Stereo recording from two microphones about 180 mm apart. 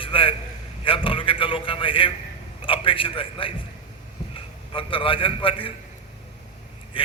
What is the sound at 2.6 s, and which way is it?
A man's voice, 30° left (ahead or behind).